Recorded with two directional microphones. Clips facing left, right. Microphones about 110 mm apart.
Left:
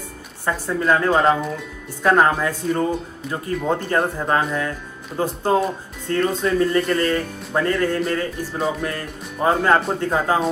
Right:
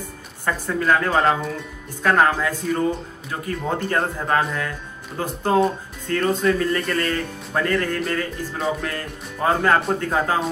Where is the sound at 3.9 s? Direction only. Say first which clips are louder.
Even; 20° left (ahead or behind).